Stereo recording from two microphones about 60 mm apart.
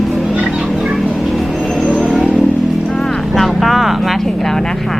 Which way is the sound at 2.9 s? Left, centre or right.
Centre.